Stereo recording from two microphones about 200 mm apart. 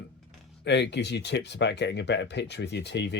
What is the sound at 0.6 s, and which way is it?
Speech, 60° left (ahead or behind).